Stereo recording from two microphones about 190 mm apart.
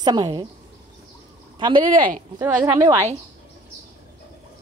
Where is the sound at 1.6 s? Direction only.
25° right (ahead or behind).